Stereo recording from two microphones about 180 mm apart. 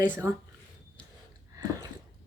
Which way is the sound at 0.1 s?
15° right (ahead or behind).